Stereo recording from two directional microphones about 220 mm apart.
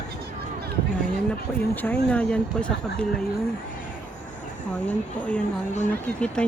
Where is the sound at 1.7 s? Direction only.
5° left (ahead or behind).